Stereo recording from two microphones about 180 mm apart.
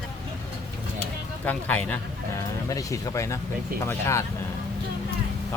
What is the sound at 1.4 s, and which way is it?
Speech, 10° left (ahead or behind).